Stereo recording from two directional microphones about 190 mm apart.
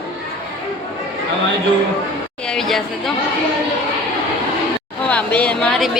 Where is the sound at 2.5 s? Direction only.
Centre (ahead or behind).